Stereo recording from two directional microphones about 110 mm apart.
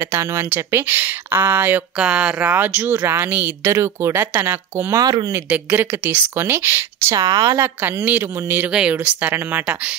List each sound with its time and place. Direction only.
0.1 s speech: 25° right (ahead or behind)
7.2 s a woman's voice: 35° right (ahead or behind)
7.5 s speech: 20° right (ahead or behind)